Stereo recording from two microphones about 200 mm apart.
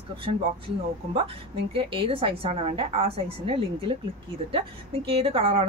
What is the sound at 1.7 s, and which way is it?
A woman's voice, 25° right (ahead or behind).